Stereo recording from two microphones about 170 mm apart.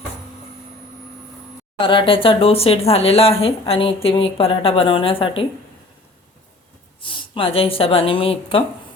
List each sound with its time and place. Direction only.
1.8 s speech: 30° left (ahead or behind)
7.0 s speech: 30° left (ahead or behind)